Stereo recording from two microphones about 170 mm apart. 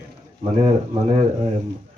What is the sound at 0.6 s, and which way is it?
Speech, 40° right (ahead or behind).